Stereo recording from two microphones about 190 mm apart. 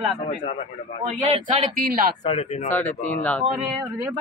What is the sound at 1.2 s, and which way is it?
Speech, 30° right (ahead or behind).